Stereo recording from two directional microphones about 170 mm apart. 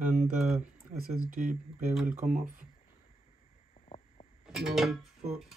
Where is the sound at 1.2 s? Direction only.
50° right (ahead or behind).